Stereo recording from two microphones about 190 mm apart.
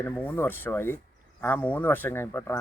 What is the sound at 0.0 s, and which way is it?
Speech, 10° left (ahead or behind).